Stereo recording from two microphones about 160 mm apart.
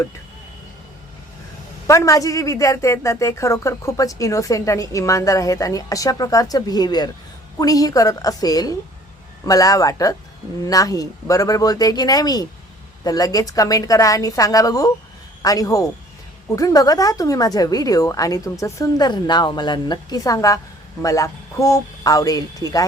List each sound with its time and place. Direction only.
1.9 s a woman's voice: 20° left (ahead or behind)